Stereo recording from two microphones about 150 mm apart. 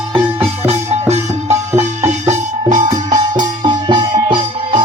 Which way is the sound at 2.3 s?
50° right (ahead or behind).